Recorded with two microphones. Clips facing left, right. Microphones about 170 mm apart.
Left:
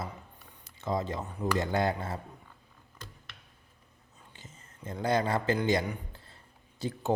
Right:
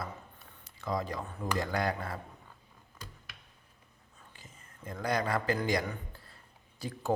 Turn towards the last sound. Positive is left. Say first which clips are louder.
# left 2 dB
turn(degrees=20)  # may be behind; listen again after turning